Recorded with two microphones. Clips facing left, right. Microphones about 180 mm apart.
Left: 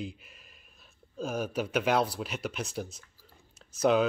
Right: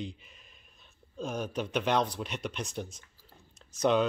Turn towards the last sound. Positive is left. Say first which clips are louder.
# left 1 dB
turn(degrees=5)  # may be behind; listen again after turning